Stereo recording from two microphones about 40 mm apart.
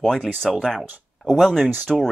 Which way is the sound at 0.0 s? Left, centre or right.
Centre.